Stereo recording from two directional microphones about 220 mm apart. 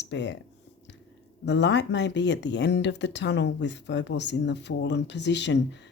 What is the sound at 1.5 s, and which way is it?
Speech, 55° left (ahead or behind).